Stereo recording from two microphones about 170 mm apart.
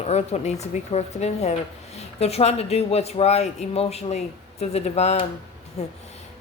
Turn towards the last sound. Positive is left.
turn(degrees=40)  # may be behind; listen again after turning